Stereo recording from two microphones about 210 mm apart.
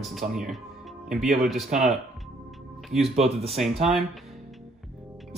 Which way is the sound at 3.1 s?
30° right (ahead or behind).